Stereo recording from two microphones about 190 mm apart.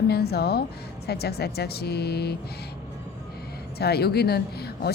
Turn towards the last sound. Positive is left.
turn(degrees=55)  # may be behind; listen again after turning